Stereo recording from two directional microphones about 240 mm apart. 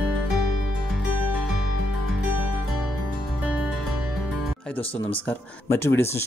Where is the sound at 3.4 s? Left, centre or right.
Centre.